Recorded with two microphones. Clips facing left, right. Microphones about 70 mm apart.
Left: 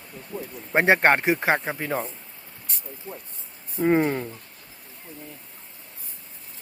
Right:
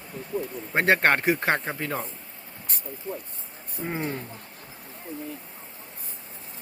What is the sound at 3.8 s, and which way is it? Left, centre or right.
Speech, left.